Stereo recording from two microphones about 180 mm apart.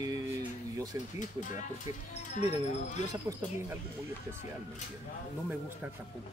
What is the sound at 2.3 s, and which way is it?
Speech, 40° left (ahead or behind).